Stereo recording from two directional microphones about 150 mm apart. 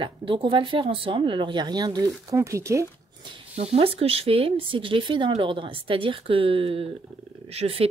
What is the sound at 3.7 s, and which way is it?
Speech, 40° right (ahead or behind).